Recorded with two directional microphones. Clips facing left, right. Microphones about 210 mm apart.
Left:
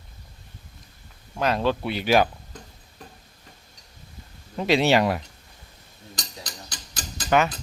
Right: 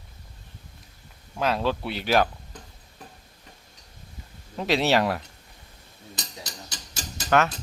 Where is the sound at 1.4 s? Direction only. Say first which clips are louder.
Left 2 dB; centre (ahead or behind).